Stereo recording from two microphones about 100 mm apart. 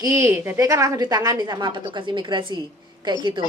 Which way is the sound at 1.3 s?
45° right (ahead or behind).